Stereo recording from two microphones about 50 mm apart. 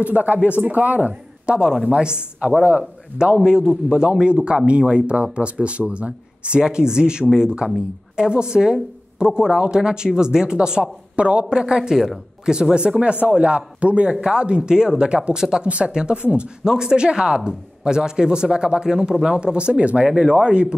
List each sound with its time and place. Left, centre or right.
0.0 s a man's voice: right
20.1 s speech: centre